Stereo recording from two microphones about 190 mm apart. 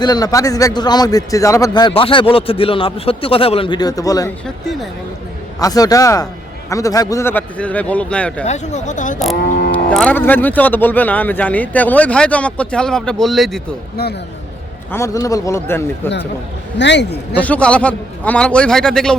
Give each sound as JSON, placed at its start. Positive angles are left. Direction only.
{"t": 0.0, "sound": "a man's voice", "side_deg": 20}
{"t": 5.5, "sound": "a man's voice", "side_deg": 20}
{"t": 8.4, "sound": "speech", "side_deg": 35}
{"t": 9.5, "sound": "speech", "side_deg": 55}
{"t": 9.7, "sound": "speech", "side_deg": 5}
{"t": 13.9, "sound": "speech", "side_deg": 55}
{"t": 14.9, "sound": "speech", "side_deg": 15}
{"t": 16.7, "sound": "a man's voice", "side_deg": 70}
{"t": 17.4, "sound": "a man's voice", "side_deg": 5}